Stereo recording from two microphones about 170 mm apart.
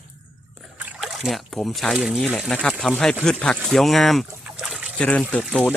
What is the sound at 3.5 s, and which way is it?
Trickle, centre (ahead or behind).